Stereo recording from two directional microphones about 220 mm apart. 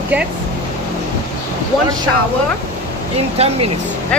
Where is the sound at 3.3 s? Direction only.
30° right (ahead or behind).